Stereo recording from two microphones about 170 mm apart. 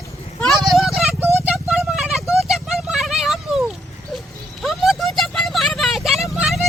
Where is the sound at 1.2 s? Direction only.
10° right (ahead or behind).